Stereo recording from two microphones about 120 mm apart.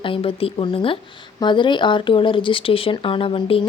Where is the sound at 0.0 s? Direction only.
50° left (ahead or behind).